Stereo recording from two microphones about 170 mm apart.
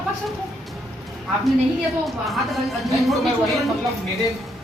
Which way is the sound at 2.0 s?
Centre (ahead or behind).